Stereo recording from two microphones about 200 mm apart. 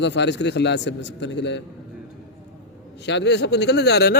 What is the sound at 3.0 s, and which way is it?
A man's voice, 60° left (ahead or behind).